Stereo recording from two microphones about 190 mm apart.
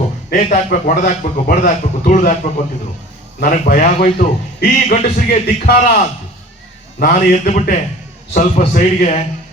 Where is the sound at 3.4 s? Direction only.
45° left (ahead or behind).